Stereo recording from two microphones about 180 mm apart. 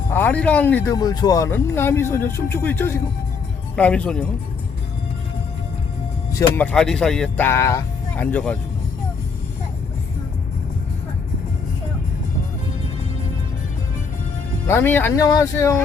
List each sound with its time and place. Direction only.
0.1 s speech: 10° left (ahead or behind)
0.9 s speech: 20° left (ahead or behind)
6.6 s speech: 5° left (ahead or behind)
14.7 s speech: 10° left (ahead or behind)